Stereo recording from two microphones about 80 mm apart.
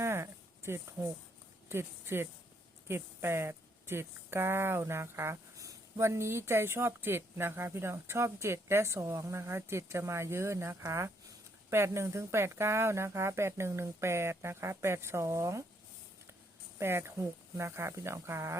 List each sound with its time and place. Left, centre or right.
0.0 s a sound: right
1.7 s speech: right
16.7 s speech: right